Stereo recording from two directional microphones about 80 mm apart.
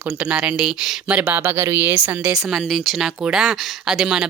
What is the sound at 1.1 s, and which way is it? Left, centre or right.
Speech, right.